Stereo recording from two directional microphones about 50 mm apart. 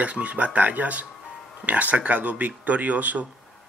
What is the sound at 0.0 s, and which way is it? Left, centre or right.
Speech, right.